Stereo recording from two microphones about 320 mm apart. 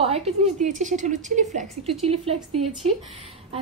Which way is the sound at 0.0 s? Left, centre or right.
Centre.